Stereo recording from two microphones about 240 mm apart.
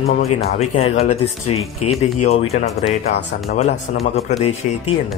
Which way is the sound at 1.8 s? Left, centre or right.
Left.